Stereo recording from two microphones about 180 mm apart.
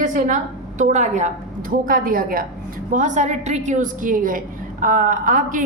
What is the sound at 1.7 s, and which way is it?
A woman's voice, 50° right (ahead or behind).